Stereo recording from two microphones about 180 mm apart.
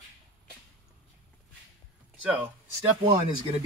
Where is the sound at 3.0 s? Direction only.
25° right (ahead or behind).